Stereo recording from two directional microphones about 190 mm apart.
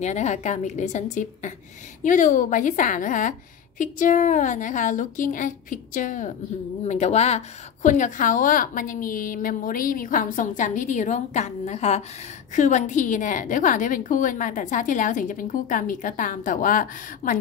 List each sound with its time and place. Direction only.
0.0 s a woman's voice: 35° left (ahead or behind)